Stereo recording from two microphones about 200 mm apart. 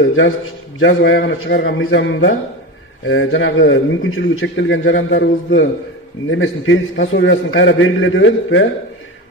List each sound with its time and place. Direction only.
0.7 s a man's voice: 70° left (ahead or behind)